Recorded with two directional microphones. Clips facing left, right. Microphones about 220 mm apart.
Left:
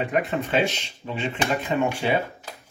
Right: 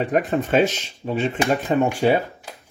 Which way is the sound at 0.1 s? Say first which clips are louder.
Right 6 dB; 45° right (ahead or behind).